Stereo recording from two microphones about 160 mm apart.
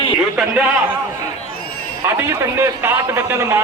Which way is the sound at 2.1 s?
15° right (ahead or behind).